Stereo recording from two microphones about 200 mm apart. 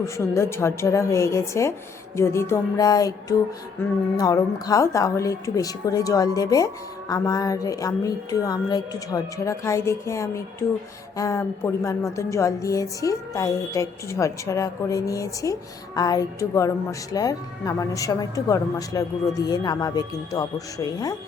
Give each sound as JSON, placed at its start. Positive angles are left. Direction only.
{"t": 0.0, "sound": "speech", "side_deg": 15}